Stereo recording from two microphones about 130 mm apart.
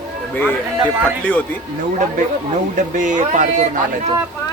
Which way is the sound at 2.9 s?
75° right (ahead or behind).